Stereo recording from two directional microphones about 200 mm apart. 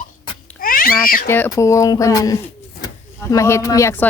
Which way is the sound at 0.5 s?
45° left (ahead or behind).